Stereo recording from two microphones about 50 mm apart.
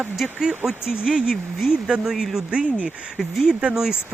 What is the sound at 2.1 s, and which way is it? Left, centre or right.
Speech, centre.